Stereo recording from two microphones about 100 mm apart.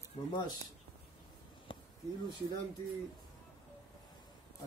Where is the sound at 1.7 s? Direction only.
55° left (ahead or behind).